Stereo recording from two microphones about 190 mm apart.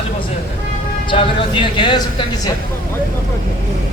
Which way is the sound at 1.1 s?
25° left (ahead or behind).